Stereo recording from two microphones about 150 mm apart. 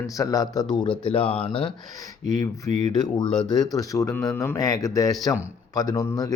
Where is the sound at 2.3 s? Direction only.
25° left (ahead or behind).